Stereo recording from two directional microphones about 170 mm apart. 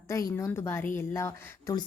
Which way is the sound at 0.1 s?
20° left (ahead or behind).